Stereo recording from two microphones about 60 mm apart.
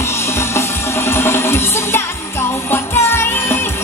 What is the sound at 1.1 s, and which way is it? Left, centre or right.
Music, left.